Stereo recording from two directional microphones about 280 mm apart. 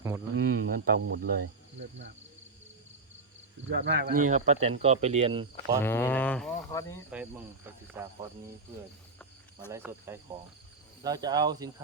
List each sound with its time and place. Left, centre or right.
0.3 s speech: right
3.7 s speech: right; by 5.8 s centre
5.8 s speech: centre
7.1 s speech: centre
9.7 s cricket: centre